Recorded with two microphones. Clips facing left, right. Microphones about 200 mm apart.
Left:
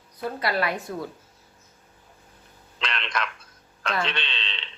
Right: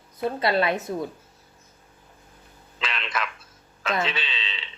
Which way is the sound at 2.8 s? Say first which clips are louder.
Even; 5° right (ahead or behind).